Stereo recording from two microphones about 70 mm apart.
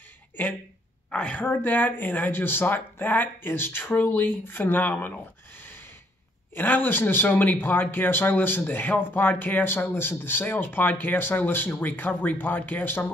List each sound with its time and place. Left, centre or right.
1.1 s speech: centre